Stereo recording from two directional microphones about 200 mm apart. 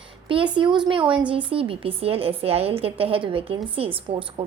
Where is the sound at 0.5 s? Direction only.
25° right (ahead or behind).